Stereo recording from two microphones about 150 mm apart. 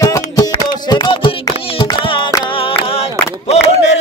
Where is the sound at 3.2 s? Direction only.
45° left (ahead or behind).